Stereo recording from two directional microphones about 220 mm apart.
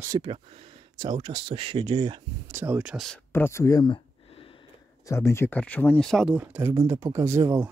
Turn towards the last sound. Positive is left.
turn(degrees=-10)  # may be behind; listen again after turning